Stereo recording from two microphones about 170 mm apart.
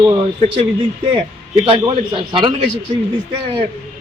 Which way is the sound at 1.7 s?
30° right (ahead or behind).